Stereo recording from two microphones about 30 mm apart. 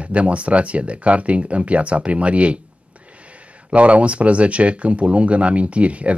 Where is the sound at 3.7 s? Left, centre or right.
Right.